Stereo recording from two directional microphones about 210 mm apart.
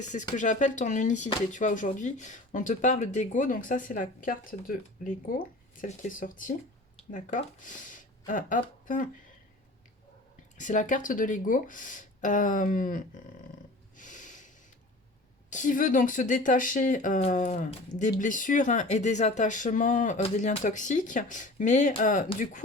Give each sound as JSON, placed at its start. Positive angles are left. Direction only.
{"t": 0.0, "sound": "speech", "side_deg": 35}
{"t": 10.6, "sound": "speech", "side_deg": 35}
{"t": 13.9, "sound": "snort", "side_deg": 35}
{"t": 15.4, "sound": "speech", "side_deg": 35}